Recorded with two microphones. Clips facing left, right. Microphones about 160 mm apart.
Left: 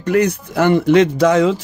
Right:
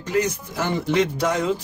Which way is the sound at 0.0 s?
65° left (ahead or behind).